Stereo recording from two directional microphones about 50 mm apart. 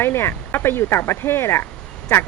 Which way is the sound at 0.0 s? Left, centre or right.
Left.